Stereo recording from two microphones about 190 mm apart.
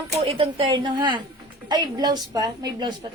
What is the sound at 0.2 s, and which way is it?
A woman's voice, 30° right (ahead or behind).